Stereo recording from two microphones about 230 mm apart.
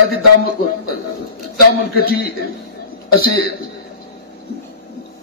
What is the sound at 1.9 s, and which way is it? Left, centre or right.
A man's voice, left.